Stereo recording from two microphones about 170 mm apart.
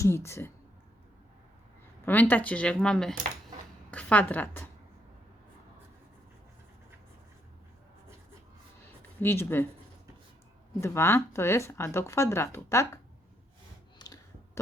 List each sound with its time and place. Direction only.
0.0 s speech: 15° left (ahead or behind)
2.0 s a woman's voice: 10° left (ahead or behind)
9.2 s speech: 15° left (ahead or behind)
10.8 s speech: 15° left (ahead or behind)
14.0 s clicking: 20° left (ahead or behind)